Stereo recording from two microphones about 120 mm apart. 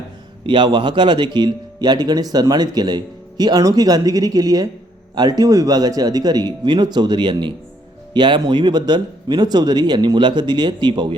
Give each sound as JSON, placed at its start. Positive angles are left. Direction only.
{"t": 0.4, "sound": "a man's voice", "side_deg": -40}